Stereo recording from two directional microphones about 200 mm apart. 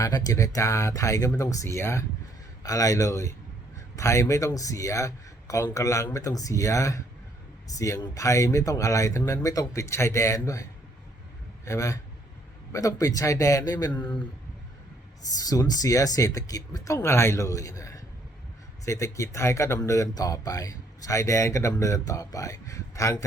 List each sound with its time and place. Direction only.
0.0 s a man's voice: 20° left (ahead or behind)
15.4 s speech: 20° left (ahead or behind)